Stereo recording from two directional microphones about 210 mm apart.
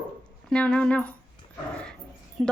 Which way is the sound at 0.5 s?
5° left (ahead or behind).